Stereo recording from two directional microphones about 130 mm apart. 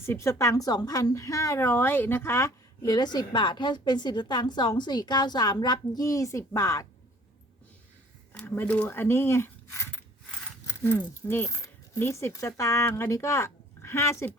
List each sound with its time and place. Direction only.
0.0 s speech: 20° left (ahead or behind)
8.3 s speech: 15° left (ahead or behind)